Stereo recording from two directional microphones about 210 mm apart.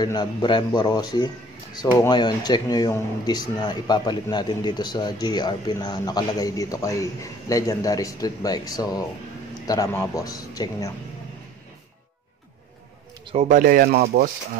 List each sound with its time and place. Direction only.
0.0 s speech: 20° left (ahead or behind)
13.2 s speech: 30° right (ahead or behind)